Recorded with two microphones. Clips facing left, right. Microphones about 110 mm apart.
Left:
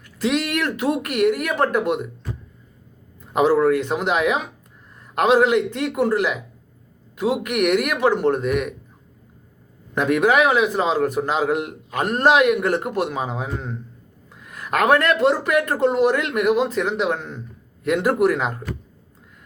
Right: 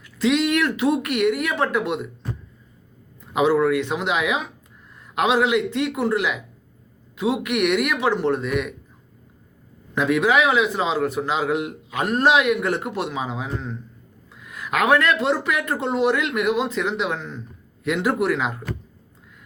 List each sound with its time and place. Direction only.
0.2 s a man's voice: 45° left (ahead or behind)
3.3 s a man's voice: 45° left (ahead or behind)
9.9 s a man's voice: 50° left (ahead or behind)